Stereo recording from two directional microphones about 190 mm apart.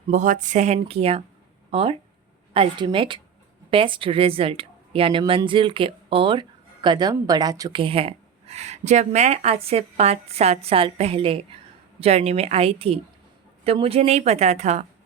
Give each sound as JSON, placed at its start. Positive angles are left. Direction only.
{"t": 0.1, "sound": "a woman's voice", "side_deg": -40}